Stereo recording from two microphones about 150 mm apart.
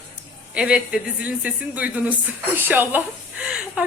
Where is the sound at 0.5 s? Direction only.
5° right (ahead or behind).